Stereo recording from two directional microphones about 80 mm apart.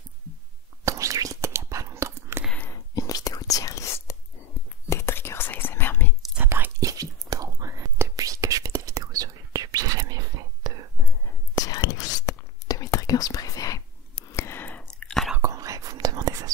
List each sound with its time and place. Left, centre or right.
0.8 s whispering: right
2.7 s whispering: left
6.4 s whispering: right
6.8 s chewing: right
8.2 s whispering: right
11.5 s whispering: left
14.3 s a sound: left
14.6 s chewing: centre
15.4 s whispering: right